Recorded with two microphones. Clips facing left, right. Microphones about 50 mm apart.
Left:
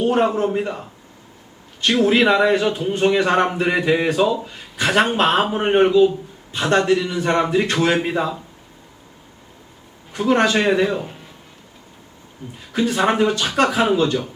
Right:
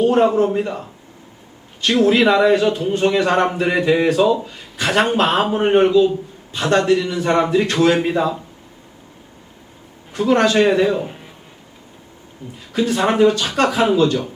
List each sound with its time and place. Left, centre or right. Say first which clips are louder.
0.0 s a man's voice: right 3 dB; centre
2.0 s a man's voice: right 2 dB; centre
10.2 s a man's voice: right 2 dB; centre
12.4 s a man's voice: right 1 dB; left
12.7 s a man's voice: right 1 dB; centre
13.9 s a man's voice: right 2 dB; centre